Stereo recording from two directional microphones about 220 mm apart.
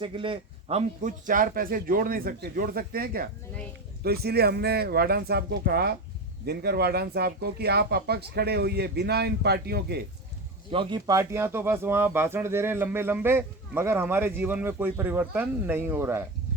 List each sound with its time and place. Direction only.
0.0 s a man's voice: 25° right (ahead or behind); by 10.0 s 45° right (ahead or behind)
10.7 s speech: 20° right (ahead or behind)